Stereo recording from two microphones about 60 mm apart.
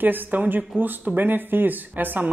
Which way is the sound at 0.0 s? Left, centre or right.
Right.